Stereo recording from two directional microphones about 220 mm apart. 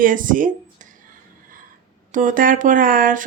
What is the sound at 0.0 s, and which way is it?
Speech, 40° right (ahead or behind).